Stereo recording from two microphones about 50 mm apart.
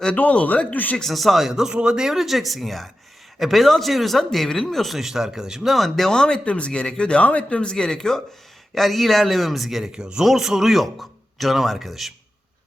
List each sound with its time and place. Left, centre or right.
0.2 s speech: left
1.1 s a man's voice: centre
5.7 s speech: centre
6.4 s a man's voice: left; by 9.9 s centre
9.9 s a man's voice: centre